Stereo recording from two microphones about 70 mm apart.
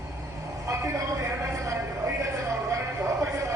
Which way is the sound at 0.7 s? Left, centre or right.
Right.